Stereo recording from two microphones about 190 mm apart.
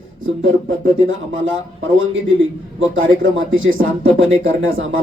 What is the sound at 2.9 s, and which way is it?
Speech, 90° right.